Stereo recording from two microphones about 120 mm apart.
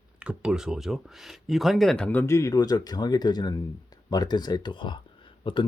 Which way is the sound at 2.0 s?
20° left (ahead or behind).